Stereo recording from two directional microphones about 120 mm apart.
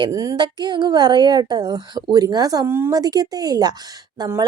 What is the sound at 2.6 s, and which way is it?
Speech, 20° right (ahead or behind).